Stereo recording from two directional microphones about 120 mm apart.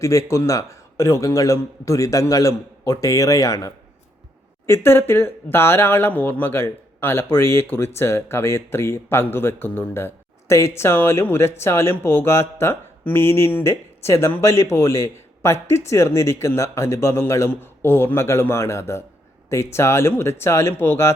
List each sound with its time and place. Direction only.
0.0 s speech: 25° left (ahead or behind)